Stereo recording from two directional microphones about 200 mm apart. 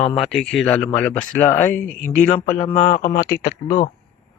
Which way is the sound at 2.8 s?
40° left (ahead or behind).